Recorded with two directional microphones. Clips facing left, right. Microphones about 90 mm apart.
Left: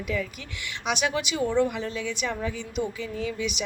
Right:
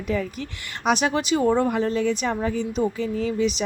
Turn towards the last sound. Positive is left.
turn(degrees=-35)  # may be behind; listen again after turning